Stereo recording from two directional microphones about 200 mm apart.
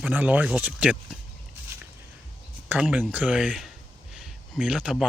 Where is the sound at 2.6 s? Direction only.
5° right (ahead or behind).